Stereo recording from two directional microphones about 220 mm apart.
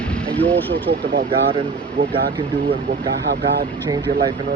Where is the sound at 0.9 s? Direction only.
45° right (ahead or behind).